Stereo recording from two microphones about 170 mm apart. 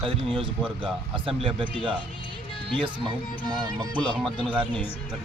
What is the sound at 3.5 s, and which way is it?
Speech, 25° right (ahead or behind).